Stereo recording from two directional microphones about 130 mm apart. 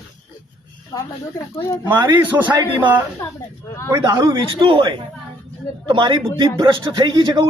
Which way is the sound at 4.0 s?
35° right (ahead or behind).